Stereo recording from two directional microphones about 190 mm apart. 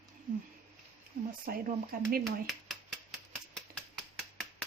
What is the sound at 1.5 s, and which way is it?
Speech, 50° right (ahead or behind).